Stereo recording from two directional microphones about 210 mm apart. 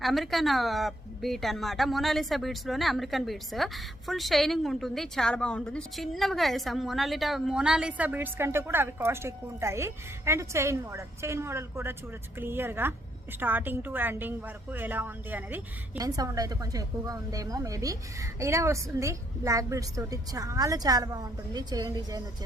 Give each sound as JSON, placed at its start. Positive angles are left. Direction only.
{"t": 0.0, "sound": "a woman's voice", "side_deg": 0}